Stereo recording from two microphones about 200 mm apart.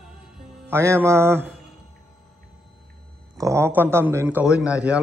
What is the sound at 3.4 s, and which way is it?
A man's voice, 15° right (ahead or behind).